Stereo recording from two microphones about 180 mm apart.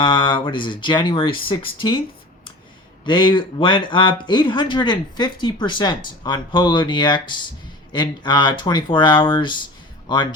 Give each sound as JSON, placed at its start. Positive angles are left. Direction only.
{"t": 0.0, "sound": "speech", "side_deg": 25}
{"t": 3.0, "sound": "speech", "side_deg": 25}